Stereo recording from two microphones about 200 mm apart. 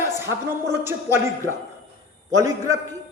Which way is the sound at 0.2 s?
15° right (ahead or behind).